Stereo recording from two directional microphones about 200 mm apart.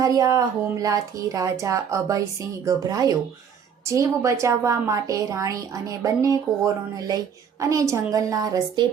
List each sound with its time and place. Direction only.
0.0 s speech: 15° right (ahead or behind)
7.6 s speech: 15° right (ahead or behind)